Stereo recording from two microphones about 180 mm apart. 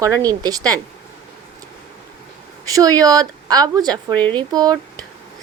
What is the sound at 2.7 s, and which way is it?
A woman's voice, 20° right (ahead or behind).